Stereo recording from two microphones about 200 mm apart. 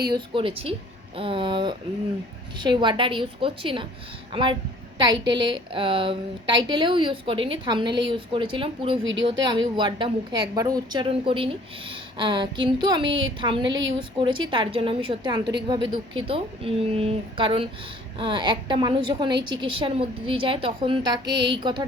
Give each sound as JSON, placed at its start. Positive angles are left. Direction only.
{"t": 0.1, "sound": "a woman's voice", "side_deg": -25}